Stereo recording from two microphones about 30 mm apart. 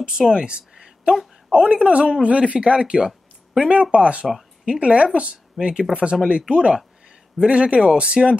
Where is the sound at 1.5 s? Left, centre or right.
Right.